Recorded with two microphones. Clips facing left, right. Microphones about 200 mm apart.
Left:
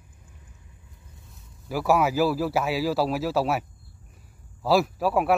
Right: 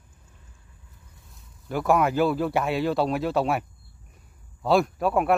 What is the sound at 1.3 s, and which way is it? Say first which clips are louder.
A man's voice: right 1 dB; 5° left (ahead or behind).